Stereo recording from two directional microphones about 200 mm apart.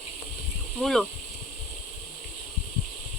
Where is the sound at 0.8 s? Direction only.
Centre (ahead or behind).